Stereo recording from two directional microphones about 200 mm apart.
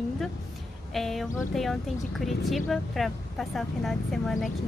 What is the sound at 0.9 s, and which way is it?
Speech, centre (ahead or behind).